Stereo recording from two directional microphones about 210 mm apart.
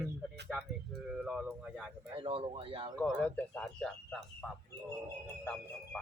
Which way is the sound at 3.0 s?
5° left (ahead or behind).